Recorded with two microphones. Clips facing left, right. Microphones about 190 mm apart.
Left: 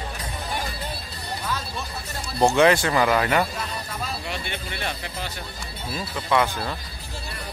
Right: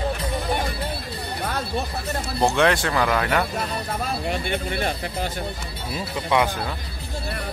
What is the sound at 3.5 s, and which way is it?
Speech, 55° right (ahead or behind).